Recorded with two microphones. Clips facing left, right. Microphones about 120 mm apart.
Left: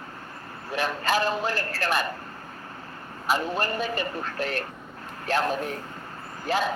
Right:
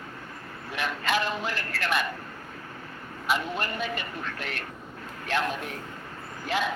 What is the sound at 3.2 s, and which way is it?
A man's voice, 35° left (ahead or behind).